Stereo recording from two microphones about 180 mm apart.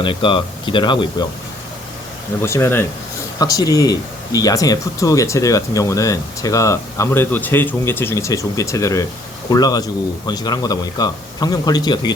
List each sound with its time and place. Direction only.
0.0 s a man's voice: 30° left (ahead or behind)
2.4 s a man's voice: 15° left (ahead or behind)